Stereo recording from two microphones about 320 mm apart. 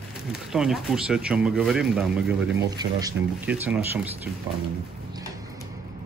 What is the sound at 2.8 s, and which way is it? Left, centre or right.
Speech, centre.